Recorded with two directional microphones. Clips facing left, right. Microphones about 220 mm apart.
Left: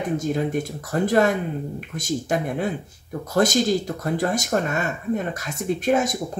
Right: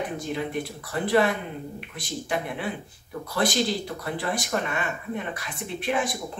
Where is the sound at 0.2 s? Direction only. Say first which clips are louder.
Left 6 dB; 45° left (ahead or behind).